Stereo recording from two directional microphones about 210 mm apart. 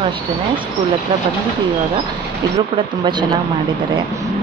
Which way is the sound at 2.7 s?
20° right (ahead or behind).